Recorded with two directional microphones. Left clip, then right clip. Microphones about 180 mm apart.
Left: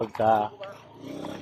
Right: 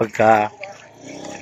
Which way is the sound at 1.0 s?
15° left (ahead or behind).